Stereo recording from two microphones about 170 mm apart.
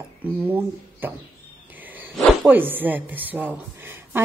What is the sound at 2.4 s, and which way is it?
A woman's voice, 10° right (ahead or behind).